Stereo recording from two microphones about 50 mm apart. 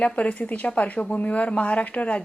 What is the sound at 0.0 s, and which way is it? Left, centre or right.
A woman's voice, left.